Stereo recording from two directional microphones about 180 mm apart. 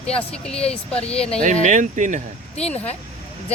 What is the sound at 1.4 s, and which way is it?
Speech, 45° right (ahead or behind).